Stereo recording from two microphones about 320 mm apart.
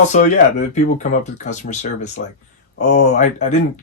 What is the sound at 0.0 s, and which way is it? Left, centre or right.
Speech, left.